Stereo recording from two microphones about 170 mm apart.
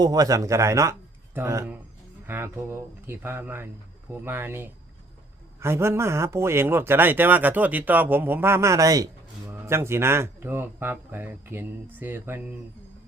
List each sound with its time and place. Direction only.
0.0 s speech: 20° right (ahead or behind)